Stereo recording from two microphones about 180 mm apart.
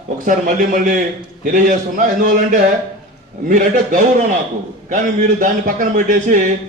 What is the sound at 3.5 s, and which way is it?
A man's voice, 45° right (ahead or behind).